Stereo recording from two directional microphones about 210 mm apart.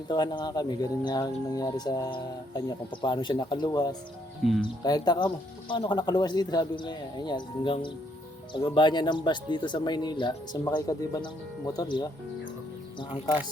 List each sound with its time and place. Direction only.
0.1 s speech: 20° left (ahead or behind)